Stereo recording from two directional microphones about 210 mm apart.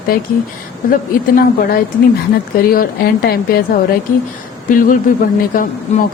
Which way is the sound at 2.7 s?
45° left (ahead or behind).